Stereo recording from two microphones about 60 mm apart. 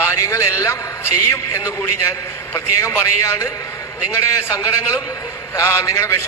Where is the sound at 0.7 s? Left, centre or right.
Left.